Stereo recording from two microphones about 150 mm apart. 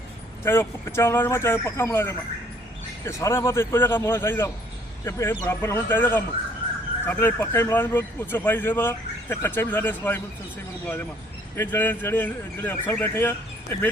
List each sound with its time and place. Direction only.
0.4 s speech: 15° left (ahead or behind)
11.5 s speech: 15° left (ahead or behind)